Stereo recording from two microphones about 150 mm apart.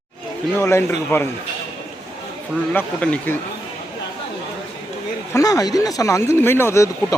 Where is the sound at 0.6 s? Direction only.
15° left (ahead or behind).